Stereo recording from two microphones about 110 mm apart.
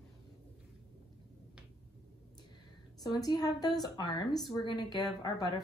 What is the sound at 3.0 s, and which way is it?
A woman's voice, 40° left (ahead or behind).